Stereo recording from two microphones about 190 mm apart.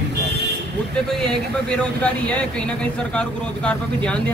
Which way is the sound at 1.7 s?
5° left (ahead or behind).